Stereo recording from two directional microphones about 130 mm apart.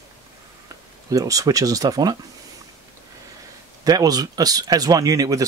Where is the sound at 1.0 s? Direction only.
25° right (ahead or behind).